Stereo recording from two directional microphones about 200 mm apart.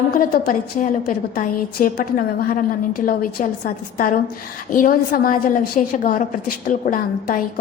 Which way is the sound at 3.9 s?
45° left (ahead or behind).